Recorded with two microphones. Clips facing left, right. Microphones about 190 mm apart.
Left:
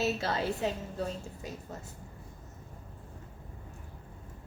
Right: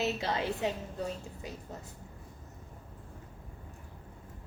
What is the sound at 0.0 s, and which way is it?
Speech, 15° right (ahead or behind).